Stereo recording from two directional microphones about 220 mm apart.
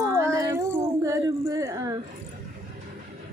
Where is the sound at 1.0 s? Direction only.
15° right (ahead or behind).